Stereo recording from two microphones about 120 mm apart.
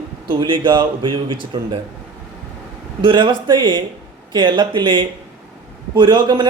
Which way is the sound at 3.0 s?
40° right (ahead or behind).